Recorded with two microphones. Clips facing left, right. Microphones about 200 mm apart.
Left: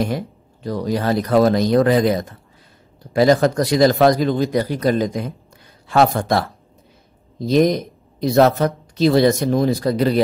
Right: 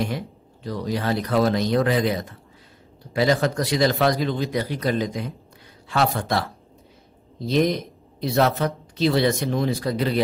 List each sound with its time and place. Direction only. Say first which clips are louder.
0.7 s speech: left 5 dB; 45° left (ahead or behind)